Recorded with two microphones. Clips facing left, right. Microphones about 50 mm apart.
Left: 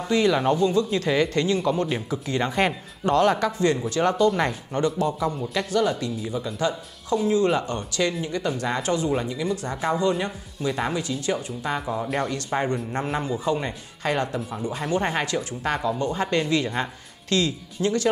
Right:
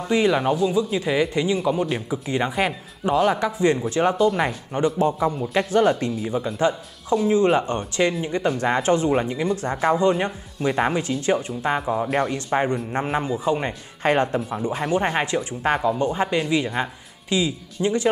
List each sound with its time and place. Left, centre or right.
0.1 s speech: centre
2.6 s speech: centre
4.9 s speech: right
12.1 s speech: centre
12.9 s speech: right
14.5 s speech: centre
15.1 s speech: right